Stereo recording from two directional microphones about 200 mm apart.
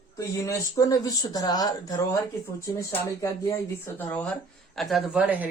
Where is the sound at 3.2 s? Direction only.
15° left (ahead or behind).